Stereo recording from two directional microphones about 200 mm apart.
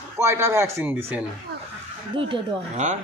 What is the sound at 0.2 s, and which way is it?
A man's voice, 15° right (ahead or behind).